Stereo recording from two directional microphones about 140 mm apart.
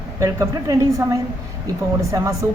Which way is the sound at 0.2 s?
25° right (ahead or behind).